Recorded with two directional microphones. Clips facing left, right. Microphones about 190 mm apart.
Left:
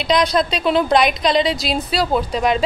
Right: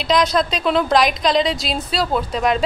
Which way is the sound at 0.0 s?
Centre (ahead or behind).